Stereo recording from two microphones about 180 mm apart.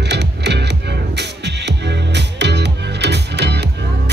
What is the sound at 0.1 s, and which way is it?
Music, 70° right (ahead or behind).